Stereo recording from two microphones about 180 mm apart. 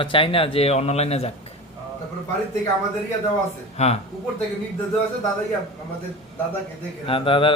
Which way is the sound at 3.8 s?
40° left (ahead or behind).